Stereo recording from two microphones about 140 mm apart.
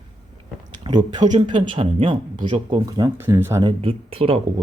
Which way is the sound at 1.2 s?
55° right (ahead or behind).